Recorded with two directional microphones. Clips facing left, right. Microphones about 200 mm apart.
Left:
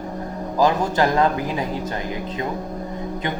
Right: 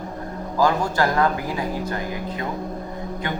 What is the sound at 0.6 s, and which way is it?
Speech, 20° left (ahead or behind).